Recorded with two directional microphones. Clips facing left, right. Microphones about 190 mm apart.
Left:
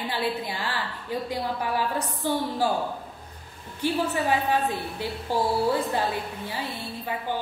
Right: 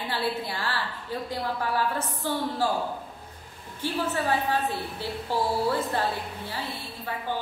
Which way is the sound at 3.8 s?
15° left (ahead or behind).